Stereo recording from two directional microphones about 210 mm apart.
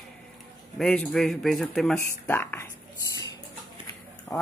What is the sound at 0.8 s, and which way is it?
Speech, 5° left (ahead or behind).